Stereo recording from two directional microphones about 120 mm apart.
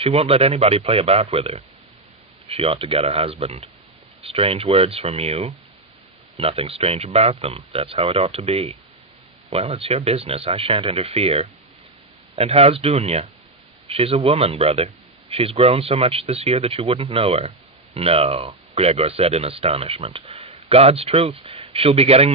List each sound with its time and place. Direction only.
0.0 s speech: 55° right (ahead or behind)